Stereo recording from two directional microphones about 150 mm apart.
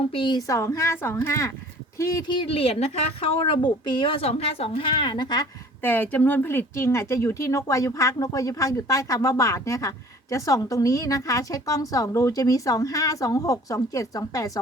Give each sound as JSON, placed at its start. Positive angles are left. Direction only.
{"t": 0.0, "sound": "speech", "side_deg": 35}
{"t": 2.3, "sound": "a woman's voice", "side_deg": 40}
{"t": 5.8, "sound": "speech", "side_deg": 15}